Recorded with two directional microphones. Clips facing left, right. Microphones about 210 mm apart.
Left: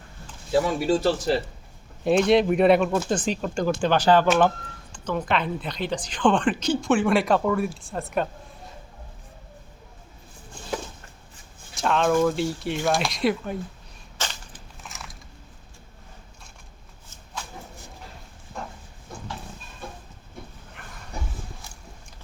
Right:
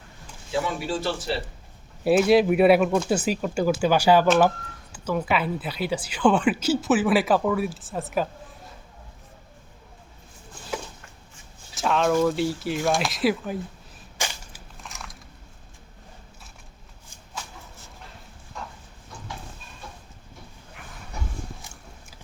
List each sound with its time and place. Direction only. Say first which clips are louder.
0.5 s speech: left 5 dB; 40° left (ahead or behind)
2.0 s speech: right 1 dB; 5° right (ahead or behind)
11.7 s a sound: even; centre (ahead or behind)
12.1 s speech: even; 5° right (ahead or behind)
14.2 s crushing: right 1 dB; 10° right (ahead or behind)
14.8 s biting: right 1 dB; centre (ahead or behind)
19.1 s a sound: left 4 dB; 50° left (ahead or behind)